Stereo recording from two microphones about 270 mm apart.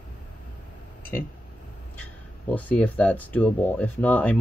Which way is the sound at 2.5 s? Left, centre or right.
Centre.